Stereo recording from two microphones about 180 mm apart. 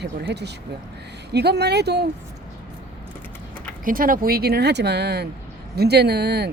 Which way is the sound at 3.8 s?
50° right (ahead or behind).